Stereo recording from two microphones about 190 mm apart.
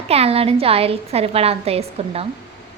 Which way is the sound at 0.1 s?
30° right (ahead or behind).